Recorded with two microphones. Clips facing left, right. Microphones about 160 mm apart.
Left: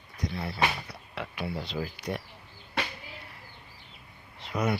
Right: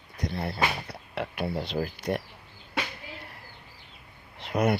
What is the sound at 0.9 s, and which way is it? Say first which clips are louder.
Music: right 5 dB; 50° right (ahead or behind).